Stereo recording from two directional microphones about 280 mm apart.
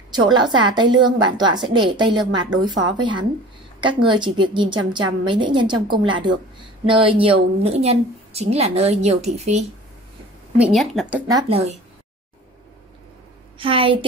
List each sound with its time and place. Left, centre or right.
0.1 s a woman's voice: centre
10.6 s speech: centre; by 11.7 s right
13.6 s a woman's voice: centre